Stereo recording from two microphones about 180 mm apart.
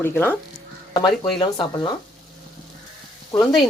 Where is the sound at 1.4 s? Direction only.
25° left (ahead or behind).